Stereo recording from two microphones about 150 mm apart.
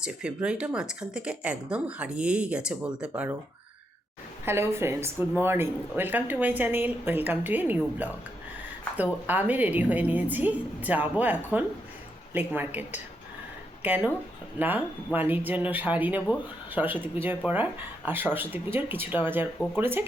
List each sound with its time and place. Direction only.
0.0 s speech: 5° right (ahead or behind)
3.1 s speech: 15° right (ahead or behind)
4.4 s speech: 15° right (ahead or behind)
9.2 s speech: 10° right (ahead or behind)